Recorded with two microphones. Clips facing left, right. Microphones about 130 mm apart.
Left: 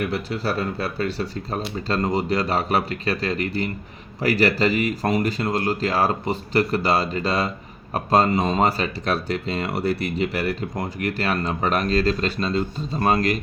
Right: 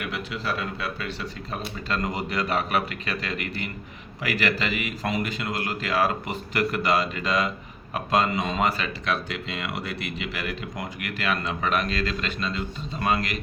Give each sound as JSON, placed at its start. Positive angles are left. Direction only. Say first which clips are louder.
{"t": 0.0, "sound": "speech", "louder": "left 6 dB", "side_deg": 35}